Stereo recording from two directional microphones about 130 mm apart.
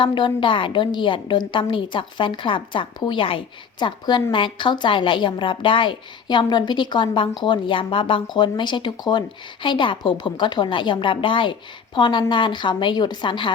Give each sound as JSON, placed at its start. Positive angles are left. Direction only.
{"t": 0.0, "sound": "a woman's voice", "side_deg": 35}